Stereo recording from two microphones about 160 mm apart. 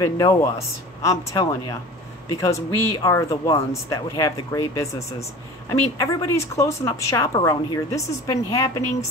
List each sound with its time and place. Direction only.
0.0 s a woman's voice: 20° left (ahead or behind)